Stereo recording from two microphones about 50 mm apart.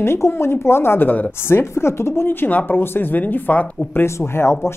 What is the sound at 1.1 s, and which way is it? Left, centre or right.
Speech, left.